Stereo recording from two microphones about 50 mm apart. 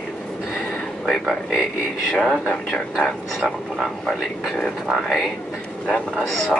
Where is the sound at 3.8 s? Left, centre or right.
Centre.